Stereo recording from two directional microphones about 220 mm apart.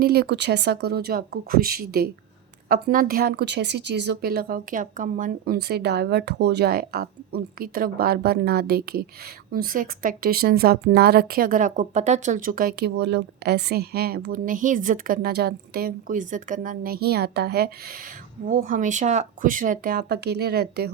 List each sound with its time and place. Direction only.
0.0 s a woman's voice: 45° right (ahead or behind)